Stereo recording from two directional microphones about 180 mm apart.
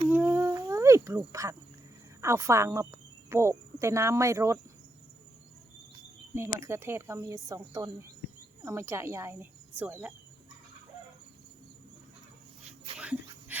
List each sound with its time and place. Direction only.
0.1 s a sound: 10° right (ahead or behind)
2.2 s speech: 15° right (ahead or behind)
6.3 s speech: 15° right (ahead or behind)
13.0 s dog: 5° right (ahead or behind)